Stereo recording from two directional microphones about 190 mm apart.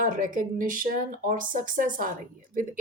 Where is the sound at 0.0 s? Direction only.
45° right (ahead or behind).